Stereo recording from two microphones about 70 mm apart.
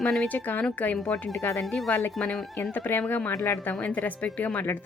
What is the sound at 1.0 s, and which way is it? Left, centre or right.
Speech, centre.